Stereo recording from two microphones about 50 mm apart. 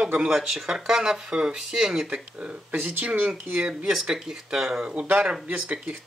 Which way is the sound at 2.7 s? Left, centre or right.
Right.